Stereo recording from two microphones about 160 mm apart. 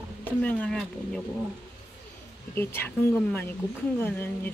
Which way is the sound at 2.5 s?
15° left (ahead or behind).